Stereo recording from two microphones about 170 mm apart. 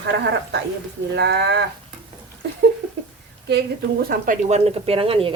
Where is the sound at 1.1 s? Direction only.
80° right.